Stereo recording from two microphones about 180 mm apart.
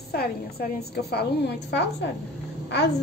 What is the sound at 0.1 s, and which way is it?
A woman's voice, 60° left (ahead or behind).